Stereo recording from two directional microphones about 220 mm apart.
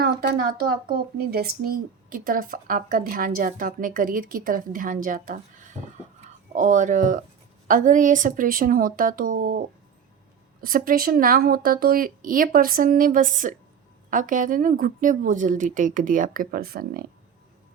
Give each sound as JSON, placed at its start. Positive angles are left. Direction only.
{"t": 0.0, "sound": "speech", "side_deg": -45}
{"t": 6.5, "sound": "speech", "side_deg": -35}